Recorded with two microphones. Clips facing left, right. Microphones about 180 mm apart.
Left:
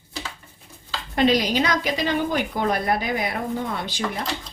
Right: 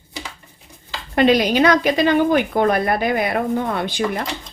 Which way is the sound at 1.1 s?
60° right (ahead or behind).